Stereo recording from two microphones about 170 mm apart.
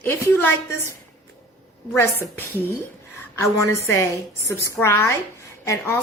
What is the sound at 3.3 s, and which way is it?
Speech, 15° left (ahead or behind).